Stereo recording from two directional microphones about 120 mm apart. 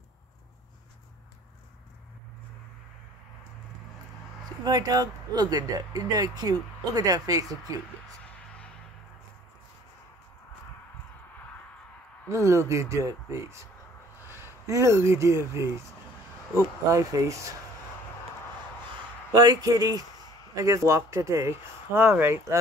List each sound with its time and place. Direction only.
4.6 s speech: 30° right (ahead or behind)
12.3 s speech: 25° right (ahead or behind)
19.3 s speech: 30° right (ahead or behind)